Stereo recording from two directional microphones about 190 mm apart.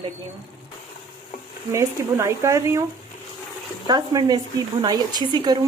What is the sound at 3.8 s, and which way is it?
Cutlery, 20° right (ahead or behind).